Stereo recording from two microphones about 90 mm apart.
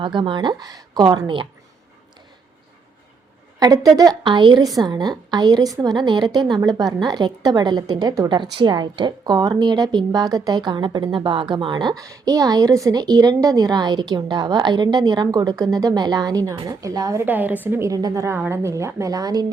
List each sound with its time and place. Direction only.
0.0 s a woman's voice: 65° right (ahead or behind); by 1.0 s 45° right (ahead or behind)
1.0 s a woman's voice: 60° right (ahead or behind)
3.6 s a woman's voice: 45° right (ahead or behind)
12.0 s a woman's voice: 40° right (ahead or behind)
17.2 s a woman's voice: 20° right (ahead or behind)
17.8 s a woman's voice: 40° right (ahead or behind)